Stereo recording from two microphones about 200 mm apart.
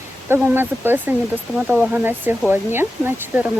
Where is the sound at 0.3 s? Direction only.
10° right (ahead or behind).